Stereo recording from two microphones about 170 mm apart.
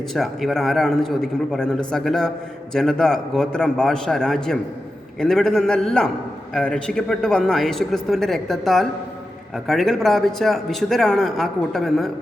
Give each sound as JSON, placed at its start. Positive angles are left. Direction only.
{"t": 0.1, "sound": "speech", "side_deg": 0}